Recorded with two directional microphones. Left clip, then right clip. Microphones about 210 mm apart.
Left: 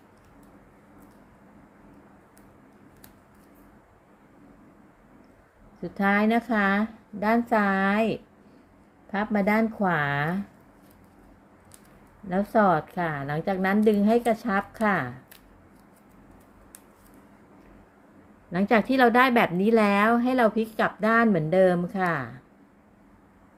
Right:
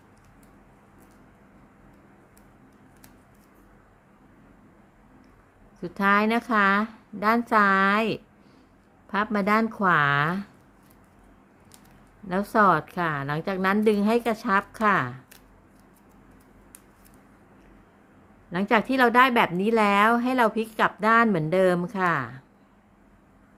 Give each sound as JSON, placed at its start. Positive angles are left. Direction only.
{"t": 5.8, "sound": "a woman's voice", "side_deg": -20}
{"t": 12.3, "sound": "a woman's voice", "side_deg": -20}
{"t": 18.5, "sound": "a woman's voice", "side_deg": -10}